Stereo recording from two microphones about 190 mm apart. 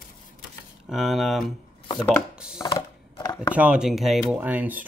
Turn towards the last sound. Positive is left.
turn(degrees=-10)  # may be behind; listen again after turning